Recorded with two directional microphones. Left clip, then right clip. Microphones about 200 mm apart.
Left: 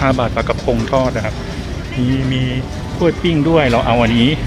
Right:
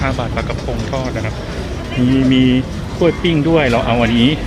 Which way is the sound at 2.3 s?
15° right (ahead or behind).